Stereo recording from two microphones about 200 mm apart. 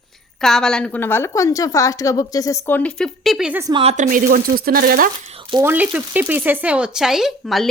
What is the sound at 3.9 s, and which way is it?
Speech, 40° right (ahead or behind).